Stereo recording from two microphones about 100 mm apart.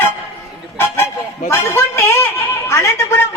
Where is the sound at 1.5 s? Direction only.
25° left (ahead or behind).